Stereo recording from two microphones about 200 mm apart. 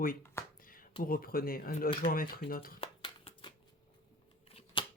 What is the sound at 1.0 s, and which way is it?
Speech, 45° left (ahead or behind).